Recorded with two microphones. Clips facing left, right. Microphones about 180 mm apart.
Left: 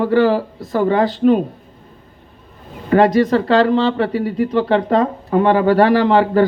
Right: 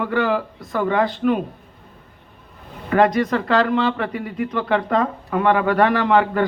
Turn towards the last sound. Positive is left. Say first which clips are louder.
# left 5 dB
turn(degrees=30)  # may be behind; listen again after turning